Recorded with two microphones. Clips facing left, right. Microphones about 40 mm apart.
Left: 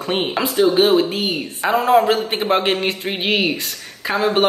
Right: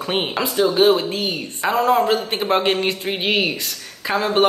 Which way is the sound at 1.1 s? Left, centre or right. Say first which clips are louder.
Left 2 dB; left.